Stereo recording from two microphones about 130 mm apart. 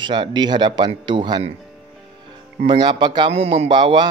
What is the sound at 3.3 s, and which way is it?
Speech, 50° right (ahead or behind).